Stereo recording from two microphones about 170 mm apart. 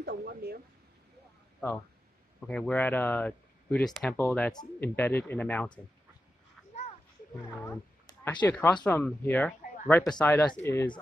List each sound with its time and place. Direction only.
0.0 s a sound: 65° right (ahead or behind)
2.4 s speech: 5° left (ahead or behind)
7.6 s speech: 15° left (ahead or behind)